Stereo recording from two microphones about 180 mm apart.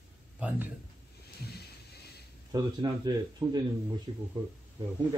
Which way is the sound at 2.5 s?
20° right (ahead or behind).